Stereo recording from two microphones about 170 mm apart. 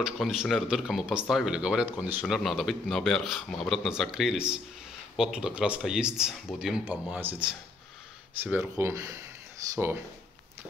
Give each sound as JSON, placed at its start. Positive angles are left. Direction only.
{"t": 0.0, "sound": "speech", "side_deg": -5}